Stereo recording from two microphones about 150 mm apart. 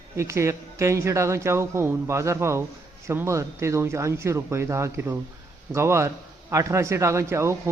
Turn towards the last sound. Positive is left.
turn(degrees=-20)  # may be behind; listen again after turning